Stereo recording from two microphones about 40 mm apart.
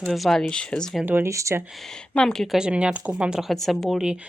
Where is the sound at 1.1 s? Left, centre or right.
Right.